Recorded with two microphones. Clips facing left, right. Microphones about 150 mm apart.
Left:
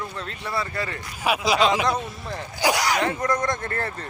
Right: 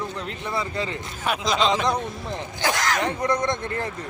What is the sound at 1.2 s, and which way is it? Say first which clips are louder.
Speech: left 2 dB; 10° left (ahead or behind).